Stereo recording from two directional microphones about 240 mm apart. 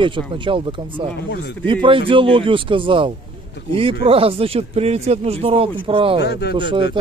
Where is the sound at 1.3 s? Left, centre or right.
Left.